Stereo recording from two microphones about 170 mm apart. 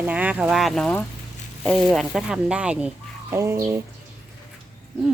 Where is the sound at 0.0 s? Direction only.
10° right (ahead or behind).